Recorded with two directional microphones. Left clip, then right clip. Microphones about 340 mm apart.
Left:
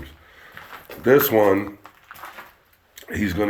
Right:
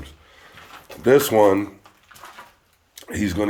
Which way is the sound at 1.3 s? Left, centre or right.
Centre.